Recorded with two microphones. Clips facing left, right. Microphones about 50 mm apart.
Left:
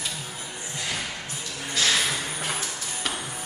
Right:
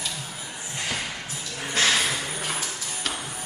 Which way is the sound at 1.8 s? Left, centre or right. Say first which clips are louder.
Right 2 dB; right.